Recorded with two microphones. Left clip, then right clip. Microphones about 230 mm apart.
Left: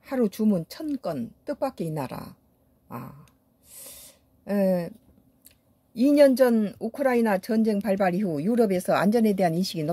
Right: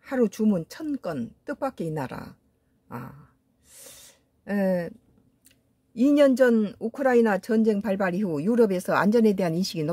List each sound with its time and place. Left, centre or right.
0.0 s speech: centre
2.9 s dog: centre
3.6 s a sound: centre
5.9 s speech: centre